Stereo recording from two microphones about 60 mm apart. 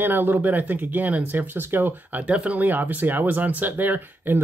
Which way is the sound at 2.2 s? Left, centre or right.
Right.